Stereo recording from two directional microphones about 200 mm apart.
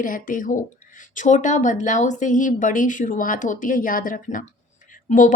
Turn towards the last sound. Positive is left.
turn(degrees=40)  # may be behind; listen again after turning